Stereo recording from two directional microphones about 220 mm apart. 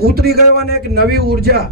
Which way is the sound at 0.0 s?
45° right (ahead or behind).